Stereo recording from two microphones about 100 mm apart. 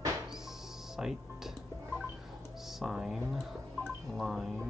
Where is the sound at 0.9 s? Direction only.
5° right (ahead or behind).